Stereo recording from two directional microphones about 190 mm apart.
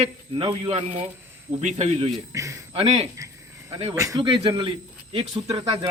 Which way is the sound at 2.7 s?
35° right (ahead or behind).